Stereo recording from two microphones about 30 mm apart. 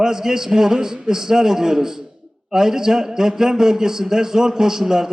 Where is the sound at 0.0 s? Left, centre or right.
Centre.